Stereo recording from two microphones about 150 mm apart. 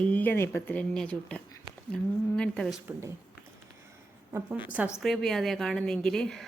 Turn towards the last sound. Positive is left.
turn(degrees=5)  # may be behind; listen again after turning